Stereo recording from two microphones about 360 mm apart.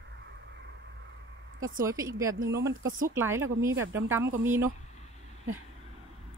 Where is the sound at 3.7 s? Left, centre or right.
Right.